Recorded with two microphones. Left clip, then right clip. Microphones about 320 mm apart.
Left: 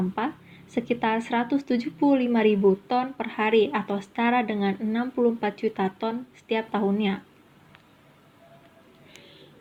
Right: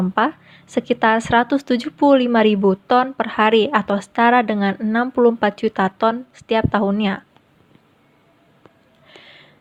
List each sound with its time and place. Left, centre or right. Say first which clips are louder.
0.7 s speech: right 9 dB; right